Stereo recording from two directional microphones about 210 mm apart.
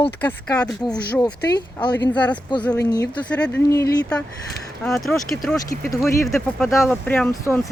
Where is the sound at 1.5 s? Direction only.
20° left (ahead or behind).